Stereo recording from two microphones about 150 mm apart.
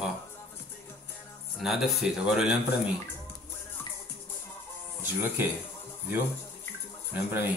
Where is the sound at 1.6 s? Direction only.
Centre (ahead or behind).